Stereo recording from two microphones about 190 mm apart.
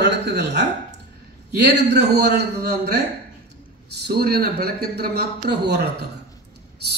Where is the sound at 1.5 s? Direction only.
60° right (ahead or behind).